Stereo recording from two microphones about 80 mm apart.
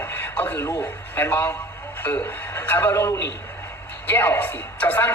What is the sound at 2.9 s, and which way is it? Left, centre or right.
Speech, left.